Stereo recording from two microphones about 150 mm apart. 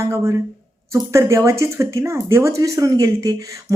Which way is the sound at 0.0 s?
20° right (ahead or behind).